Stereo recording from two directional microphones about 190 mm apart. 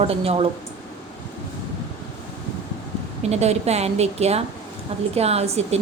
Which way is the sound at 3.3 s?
35° right (ahead or behind).